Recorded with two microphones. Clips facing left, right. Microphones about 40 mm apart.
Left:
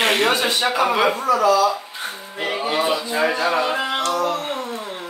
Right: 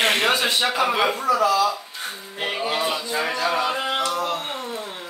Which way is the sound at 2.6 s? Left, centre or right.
Centre.